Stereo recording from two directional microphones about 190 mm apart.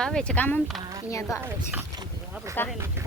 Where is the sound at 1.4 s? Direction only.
10° right (ahead or behind).